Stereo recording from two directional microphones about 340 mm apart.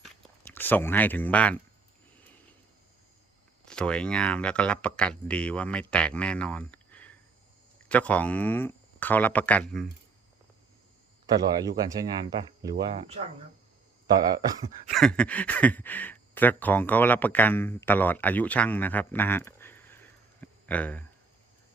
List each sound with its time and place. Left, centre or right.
0.0 s biting: centre
3.7 s speech: centre
11.3 s speech: centre
14.9 s speech: centre
20.4 s a sound: centre